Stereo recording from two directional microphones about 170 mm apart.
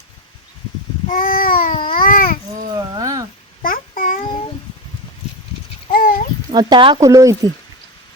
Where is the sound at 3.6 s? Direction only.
55° left (ahead or behind).